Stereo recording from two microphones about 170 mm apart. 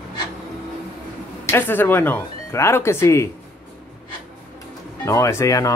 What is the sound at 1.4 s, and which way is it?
Speech, 15° left (ahead or behind).